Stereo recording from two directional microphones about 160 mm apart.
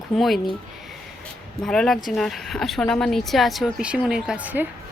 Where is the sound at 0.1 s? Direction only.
Centre (ahead or behind).